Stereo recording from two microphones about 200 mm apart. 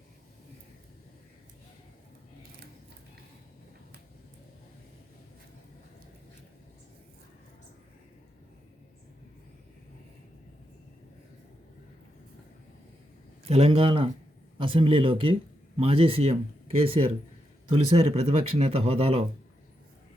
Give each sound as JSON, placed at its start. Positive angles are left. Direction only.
{"t": 13.4, "sound": "speech", "side_deg": -30}